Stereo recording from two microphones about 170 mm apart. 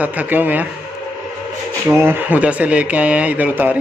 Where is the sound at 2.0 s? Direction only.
10° right (ahead or behind).